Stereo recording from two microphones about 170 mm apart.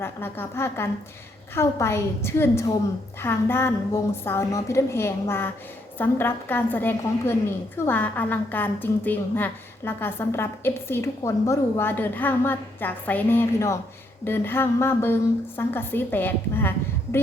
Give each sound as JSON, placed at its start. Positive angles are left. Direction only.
{"t": 0.0, "sound": "a woman's voice", "side_deg": 15}